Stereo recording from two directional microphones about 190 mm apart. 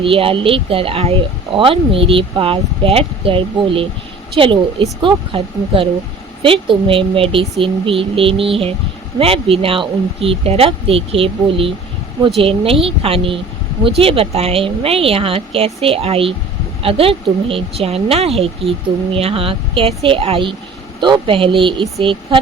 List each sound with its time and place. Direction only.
0.0 s speech: 30° right (ahead or behind)